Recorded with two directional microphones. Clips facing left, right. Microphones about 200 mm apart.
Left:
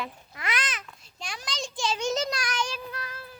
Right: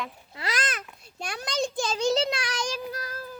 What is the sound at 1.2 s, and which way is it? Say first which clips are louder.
Speech: right 7 dB; 60° right (ahead or behind).